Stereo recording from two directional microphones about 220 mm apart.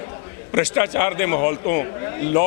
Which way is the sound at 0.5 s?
15° left (ahead or behind).